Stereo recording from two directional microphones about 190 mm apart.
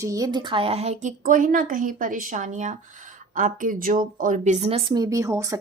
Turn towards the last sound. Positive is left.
turn(degrees=-15)  # may be behind; listen again after turning